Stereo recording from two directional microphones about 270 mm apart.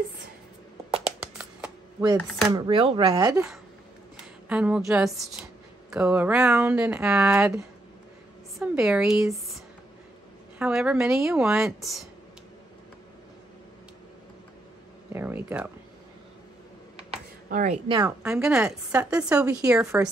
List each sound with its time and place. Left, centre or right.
1.4 s a sound: centre
2.5 s speech: centre
4.5 s speech: centre
10.6 s speech: centre
15.1 s speech: centre
17.1 s a sound: right
18.2 s speech: centre